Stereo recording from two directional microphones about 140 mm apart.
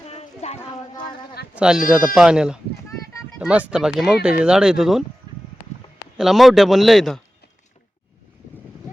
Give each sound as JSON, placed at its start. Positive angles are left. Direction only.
{"t": 0.1, "sound": "a sound", "side_deg": 50}
{"t": 1.5, "sound": "speech", "side_deg": -5}
{"t": 6.1, "sound": "speech", "side_deg": 0}